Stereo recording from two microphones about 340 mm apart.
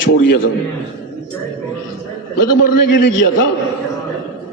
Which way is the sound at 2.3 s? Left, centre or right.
Left.